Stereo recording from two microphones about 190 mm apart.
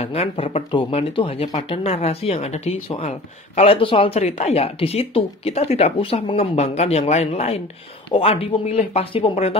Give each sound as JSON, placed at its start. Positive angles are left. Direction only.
{"t": 0.0, "sound": "speech", "side_deg": 30}